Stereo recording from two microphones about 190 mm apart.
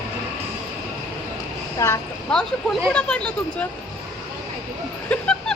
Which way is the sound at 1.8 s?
15° left (ahead or behind).